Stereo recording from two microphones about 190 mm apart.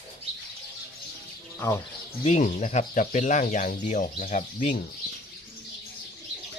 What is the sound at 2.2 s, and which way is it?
Speech, 40° left (ahead or behind).